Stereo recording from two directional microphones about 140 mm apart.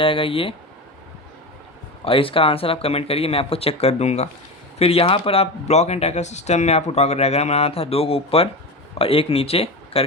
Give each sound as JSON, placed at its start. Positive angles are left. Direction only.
{"t": 0.0, "sound": "speech", "side_deg": 40}
{"t": 2.0, "sound": "speech", "side_deg": 40}